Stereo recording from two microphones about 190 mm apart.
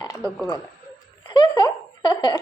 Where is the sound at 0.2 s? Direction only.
5° left (ahead or behind).